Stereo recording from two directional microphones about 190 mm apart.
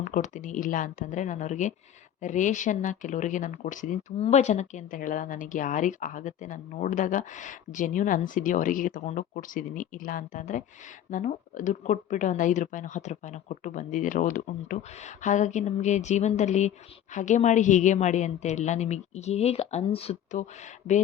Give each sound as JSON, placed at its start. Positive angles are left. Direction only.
{"t": 0.0, "sound": "speech", "side_deg": 40}